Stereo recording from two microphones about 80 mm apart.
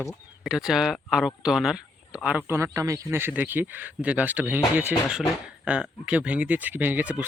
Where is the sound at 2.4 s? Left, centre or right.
Right.